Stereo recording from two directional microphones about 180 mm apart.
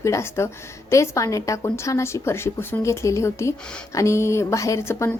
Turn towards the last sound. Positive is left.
turn(degrees=15)  # may be behind; listen again after turning